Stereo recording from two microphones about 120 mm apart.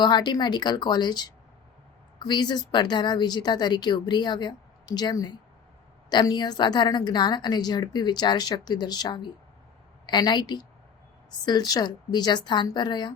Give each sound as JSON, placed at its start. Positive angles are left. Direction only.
{"t": 0.0, "sound": "a woman's voice", "side_deg": 35}